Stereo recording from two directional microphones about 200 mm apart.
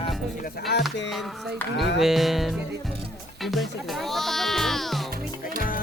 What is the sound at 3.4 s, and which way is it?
Music, centre (ahead or behind).